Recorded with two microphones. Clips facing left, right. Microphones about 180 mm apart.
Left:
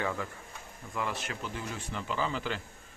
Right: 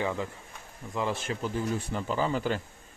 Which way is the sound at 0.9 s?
25° right (ahead or behind).